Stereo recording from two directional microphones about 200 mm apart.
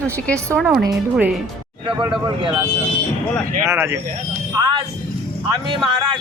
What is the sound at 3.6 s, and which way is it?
Speech, 10° right (ahead or behind).